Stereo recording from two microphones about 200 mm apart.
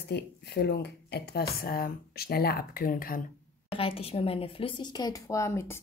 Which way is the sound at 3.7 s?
25° left (ahead or behind).